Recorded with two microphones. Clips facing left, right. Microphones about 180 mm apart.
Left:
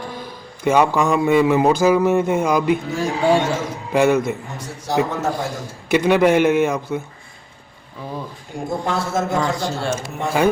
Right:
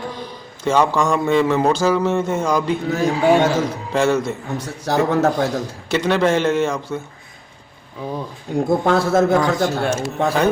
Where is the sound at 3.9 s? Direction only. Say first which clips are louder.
Left 2 dB; 10° left (ahead or behind).